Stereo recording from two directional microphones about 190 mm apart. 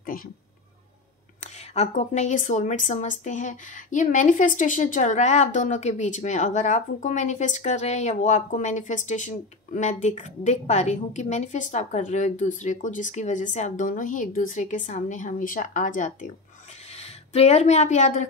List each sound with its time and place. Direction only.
1.4 s speech: 35° left (ahead or behind)